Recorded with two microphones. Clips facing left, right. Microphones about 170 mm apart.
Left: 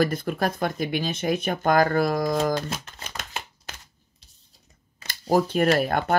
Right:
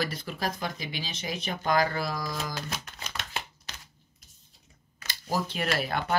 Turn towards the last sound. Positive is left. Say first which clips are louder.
# left 8 dB
turn(degrees=50)  # may be behind; listen again after turning